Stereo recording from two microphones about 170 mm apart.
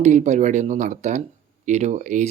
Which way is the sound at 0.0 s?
40° right (ahead or behind).